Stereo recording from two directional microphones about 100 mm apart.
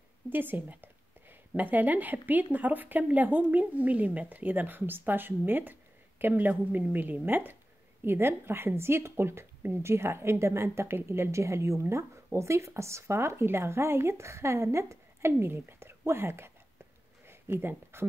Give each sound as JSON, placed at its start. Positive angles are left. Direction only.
{"t": 0.3, "sound": "a woman's voice", "side_deg": -20}